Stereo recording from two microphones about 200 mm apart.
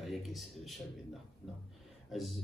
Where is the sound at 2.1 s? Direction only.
Centre (ahead or behind).